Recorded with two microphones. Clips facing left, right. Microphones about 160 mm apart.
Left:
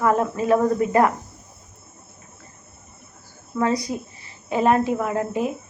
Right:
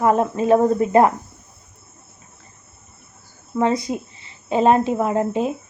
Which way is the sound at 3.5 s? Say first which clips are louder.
Right 2 dB; 25° right (ahead or behind).